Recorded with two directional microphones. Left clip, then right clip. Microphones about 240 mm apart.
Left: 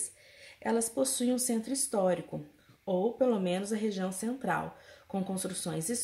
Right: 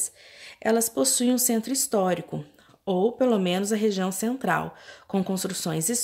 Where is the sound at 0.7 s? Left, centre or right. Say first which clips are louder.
Right 7 dB; right.